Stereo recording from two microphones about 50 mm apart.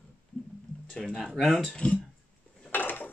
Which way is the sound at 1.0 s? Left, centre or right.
Centre.